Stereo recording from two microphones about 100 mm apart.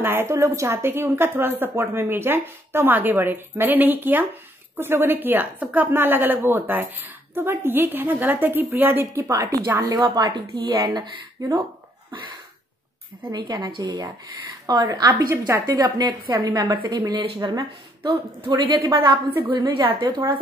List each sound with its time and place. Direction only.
0.0 s a woman's voice: 20° right (ahead or behind)
9.3 s a woman's voice: 35° right (ahead or behind)
13.7 s a woman's voice: 45° right (ahead or behind)
15.1 s a woman's voice: 25° right (ahead or behind)
15.6 s a woman's voice: 45° right (ahead or behind)